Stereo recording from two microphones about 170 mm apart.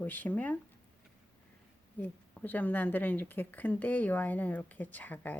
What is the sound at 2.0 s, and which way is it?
Speech, 10° left (ahead or behind).